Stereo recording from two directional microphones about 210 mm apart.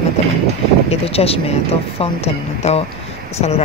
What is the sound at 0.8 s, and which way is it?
Speech, 30° left (ahead or behind).